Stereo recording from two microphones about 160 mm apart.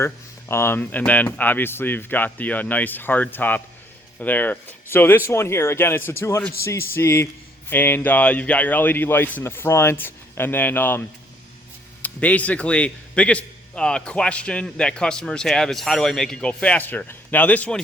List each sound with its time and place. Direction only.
0.0 s a man's voice: 15° left (ahead or behind)
12.0 s a man's voice: 10° left (ahead or behind)